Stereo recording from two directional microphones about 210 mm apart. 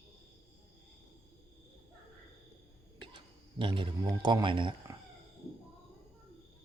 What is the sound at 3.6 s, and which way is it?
A man's voice, 25° right (ahead or behind).